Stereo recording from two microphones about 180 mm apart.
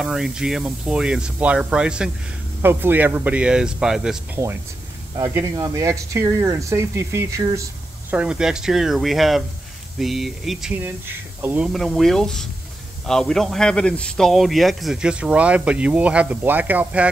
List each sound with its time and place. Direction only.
0.0 s speech: 5° right (ahead or behind)
5.1 s speech: 15° right (ahead or behind)